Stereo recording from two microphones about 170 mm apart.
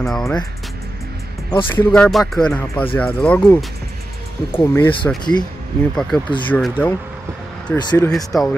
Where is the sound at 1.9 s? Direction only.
Centre (ahead or behind).